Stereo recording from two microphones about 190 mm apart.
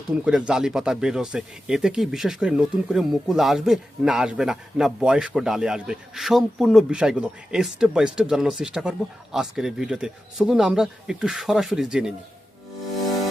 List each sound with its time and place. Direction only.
0.1 s speech: 5° right (ahead or behind)